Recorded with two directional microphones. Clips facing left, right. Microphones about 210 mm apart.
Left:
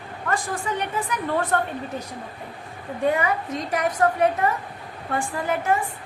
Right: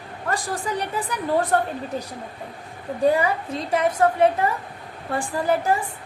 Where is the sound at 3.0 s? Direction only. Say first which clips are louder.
Right 3 dB; 35° right (ahead or behind).